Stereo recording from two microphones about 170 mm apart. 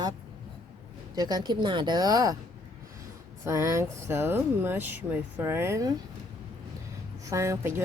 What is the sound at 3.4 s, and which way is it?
Speech, 15° right (ahead or behind).